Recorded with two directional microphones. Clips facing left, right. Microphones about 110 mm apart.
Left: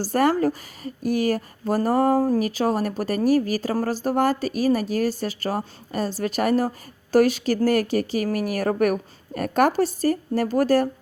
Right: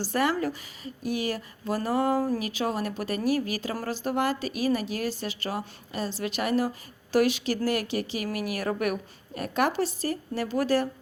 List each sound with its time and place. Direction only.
0.0 s a woman's voice: 45° left (ahead or behind)